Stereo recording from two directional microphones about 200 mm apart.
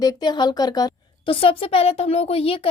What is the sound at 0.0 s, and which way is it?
A woman's voice, 20° left (ahead or behind).